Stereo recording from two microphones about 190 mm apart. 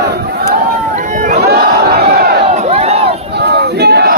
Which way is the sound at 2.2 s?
55° right (ahead or behind).